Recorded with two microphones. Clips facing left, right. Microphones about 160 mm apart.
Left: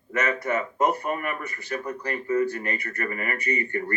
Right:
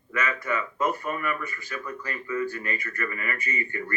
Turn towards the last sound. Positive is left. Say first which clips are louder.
# left 5 dB
turn(degrees=40)  # may be behind; listen again after turning